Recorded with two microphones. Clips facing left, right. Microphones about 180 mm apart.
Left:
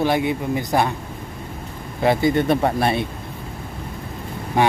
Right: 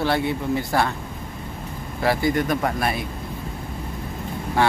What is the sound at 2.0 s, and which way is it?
Speech, 20° left (ahead or behind).